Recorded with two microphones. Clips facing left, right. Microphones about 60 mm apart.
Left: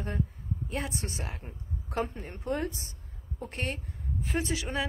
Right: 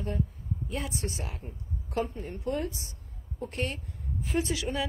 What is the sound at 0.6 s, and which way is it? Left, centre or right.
Speech, left.